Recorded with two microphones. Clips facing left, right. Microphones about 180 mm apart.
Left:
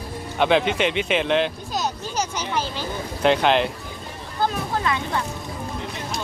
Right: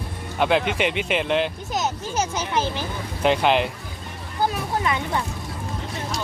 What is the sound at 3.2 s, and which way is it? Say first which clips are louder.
Speech: left 1 dB; 5° right (ahead or behind).